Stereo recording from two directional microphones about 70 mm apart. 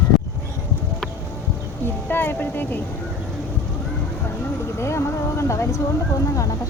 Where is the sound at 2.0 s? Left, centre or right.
Left.